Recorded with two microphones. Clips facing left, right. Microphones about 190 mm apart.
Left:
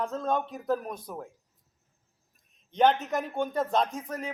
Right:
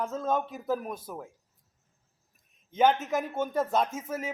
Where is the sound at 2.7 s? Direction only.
5° right (ahead or behind).